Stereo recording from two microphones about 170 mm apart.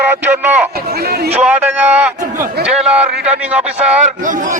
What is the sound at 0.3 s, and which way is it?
Speech, 10° right (ahead or behind).